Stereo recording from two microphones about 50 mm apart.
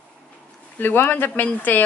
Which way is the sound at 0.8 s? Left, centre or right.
Left.